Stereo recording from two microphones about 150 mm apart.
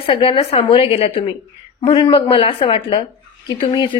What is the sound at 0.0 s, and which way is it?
A woman's voice, 35° left (ahead or behind).